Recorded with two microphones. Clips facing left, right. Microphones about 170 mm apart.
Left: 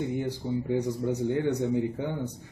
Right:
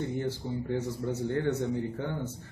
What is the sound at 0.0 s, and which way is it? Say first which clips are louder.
Speech: left 2 dB; 15° left (ahead or behind).